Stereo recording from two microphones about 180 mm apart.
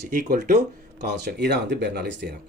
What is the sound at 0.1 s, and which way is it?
Speech, 60° right (ahead or behind).